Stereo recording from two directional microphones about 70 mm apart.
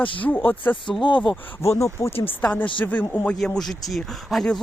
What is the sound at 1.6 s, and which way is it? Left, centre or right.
Speech, left.